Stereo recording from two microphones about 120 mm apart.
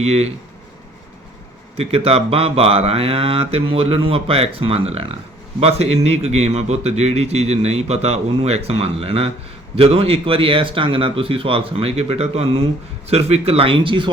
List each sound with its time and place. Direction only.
0.0 s a man's voice: 60° right (ahead or behind)
1.7 s a man's voice: 55° right (ahead or behind)